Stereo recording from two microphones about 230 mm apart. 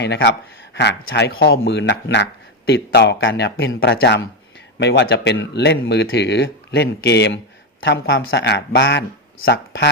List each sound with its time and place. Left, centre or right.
0.0 s speech: left